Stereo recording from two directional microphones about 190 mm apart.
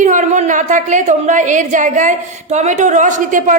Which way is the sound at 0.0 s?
40° right (ahead or behind).